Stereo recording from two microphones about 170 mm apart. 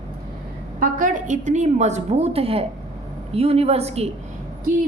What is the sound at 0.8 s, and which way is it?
A woman's voice, 50° right (ahead or behind).